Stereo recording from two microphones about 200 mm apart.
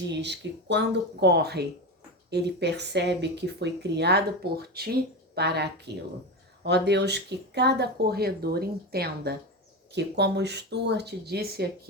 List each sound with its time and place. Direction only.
0.1 s speech: 60° right (ahead or behind)